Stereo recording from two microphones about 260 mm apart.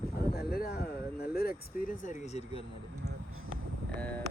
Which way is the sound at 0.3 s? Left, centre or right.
Left.